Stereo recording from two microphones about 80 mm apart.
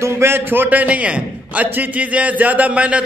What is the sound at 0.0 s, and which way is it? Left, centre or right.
A man's voice, right.